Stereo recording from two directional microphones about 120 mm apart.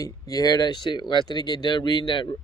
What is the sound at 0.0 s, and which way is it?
Speech, 30° left (ahead or behind).